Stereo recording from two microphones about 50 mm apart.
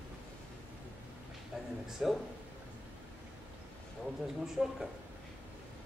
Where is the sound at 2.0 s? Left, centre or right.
Centre.